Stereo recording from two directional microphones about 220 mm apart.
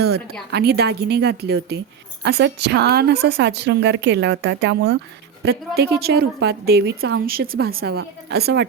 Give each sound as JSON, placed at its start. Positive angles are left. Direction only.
{"t": 0.5, "sound": "a woman's voice", "side_deg": -45}